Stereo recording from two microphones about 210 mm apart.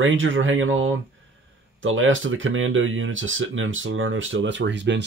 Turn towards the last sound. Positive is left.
turn(degrees=-60)  # may be behind; listen again after turning